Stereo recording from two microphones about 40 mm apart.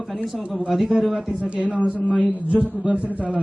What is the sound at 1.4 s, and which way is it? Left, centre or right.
A man's voice, right.